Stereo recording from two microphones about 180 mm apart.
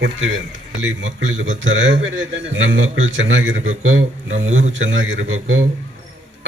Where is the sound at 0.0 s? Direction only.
90° right.